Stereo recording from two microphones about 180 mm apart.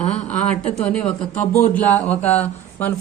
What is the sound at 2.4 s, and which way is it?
Speech, 10° left (ahead or behind).